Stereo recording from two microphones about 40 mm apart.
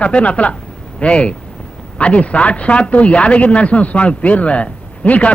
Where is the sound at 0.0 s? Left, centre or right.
Left.